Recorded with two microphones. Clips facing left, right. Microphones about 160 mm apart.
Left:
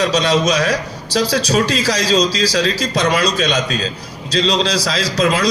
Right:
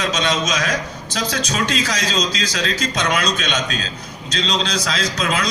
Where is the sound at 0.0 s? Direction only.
35° left (ahead or behind).